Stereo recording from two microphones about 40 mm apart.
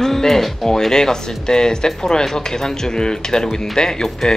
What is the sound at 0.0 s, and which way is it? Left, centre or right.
Speech, centre.